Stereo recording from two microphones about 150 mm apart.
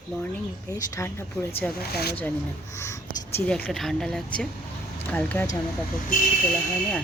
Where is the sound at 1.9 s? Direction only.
90° left.